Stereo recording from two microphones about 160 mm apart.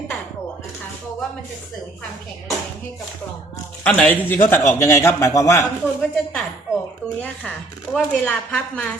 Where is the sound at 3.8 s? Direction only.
5° left (ahead or behind).